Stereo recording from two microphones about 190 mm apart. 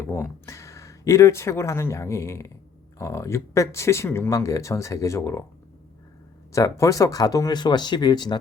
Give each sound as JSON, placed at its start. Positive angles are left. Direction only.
{"t": 0.0, "sound": "speech", "side_deg": 15}
{"t": 6.5, "sound": "speech", "side_deg": 15}